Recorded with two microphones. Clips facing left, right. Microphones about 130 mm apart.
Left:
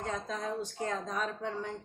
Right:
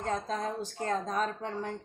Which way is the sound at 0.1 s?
50° right (ahead or behind).